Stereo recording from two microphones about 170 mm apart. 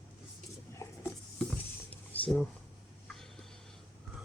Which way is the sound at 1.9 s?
10° left (ahead or behind).